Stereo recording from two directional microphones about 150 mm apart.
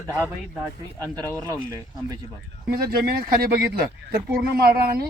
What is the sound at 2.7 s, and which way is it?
Speech, 90° right.